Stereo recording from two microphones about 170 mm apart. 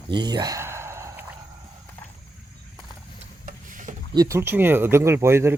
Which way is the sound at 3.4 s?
50° right (ahead or behind).